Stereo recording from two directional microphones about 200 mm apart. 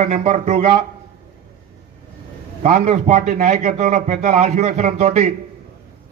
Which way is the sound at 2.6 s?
35° right (ahead or behind).